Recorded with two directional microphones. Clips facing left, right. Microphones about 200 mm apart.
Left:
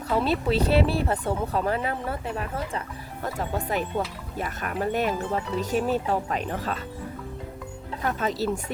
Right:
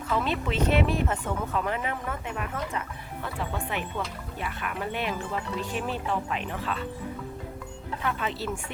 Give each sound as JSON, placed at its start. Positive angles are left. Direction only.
{"t": 0.1, "sound": "speech", "side_deg": 35}
{"t": 8.0, "sound": "speech", "side_deg": 40}